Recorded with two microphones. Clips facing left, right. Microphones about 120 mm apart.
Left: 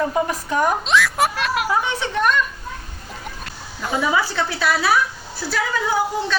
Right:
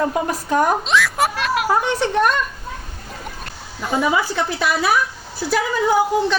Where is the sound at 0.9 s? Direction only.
Centre (ahead or behind).